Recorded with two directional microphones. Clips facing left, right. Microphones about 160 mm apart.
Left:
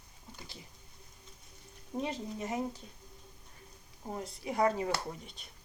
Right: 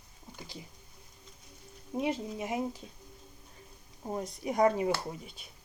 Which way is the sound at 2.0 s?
10° right (ahead or behind).